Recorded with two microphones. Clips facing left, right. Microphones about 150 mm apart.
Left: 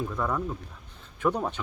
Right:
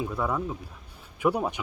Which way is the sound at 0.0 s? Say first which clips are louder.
Right 1 dB; 10° right (ahead or behind).